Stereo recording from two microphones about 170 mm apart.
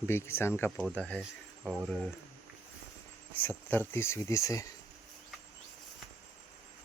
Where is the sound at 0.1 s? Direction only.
15° left (ahead or behind).